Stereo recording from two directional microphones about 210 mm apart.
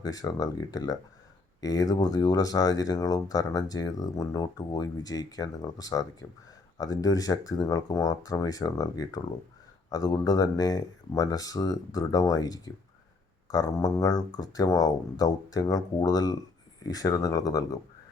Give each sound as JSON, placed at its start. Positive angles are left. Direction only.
{"t": 0.0, "sound": "speech", "side_deg": 15}